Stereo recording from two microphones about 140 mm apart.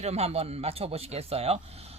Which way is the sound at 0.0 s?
50° right (ahead or behind).